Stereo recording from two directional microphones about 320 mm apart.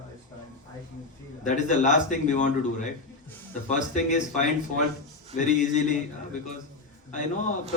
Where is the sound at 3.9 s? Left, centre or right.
Left.